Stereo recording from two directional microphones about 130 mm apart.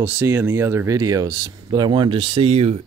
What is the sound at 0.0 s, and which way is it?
Speech, 15° right (ahead or behind).